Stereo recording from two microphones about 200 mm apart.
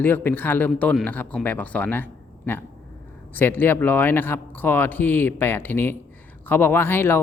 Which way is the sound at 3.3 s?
10° left (ahead or behind).